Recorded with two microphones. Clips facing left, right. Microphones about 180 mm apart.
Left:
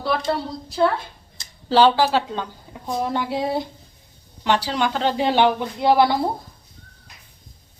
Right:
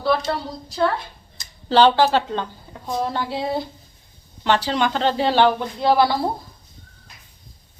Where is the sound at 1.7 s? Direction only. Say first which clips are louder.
Right 1 dB; 5° left (ahead or behind).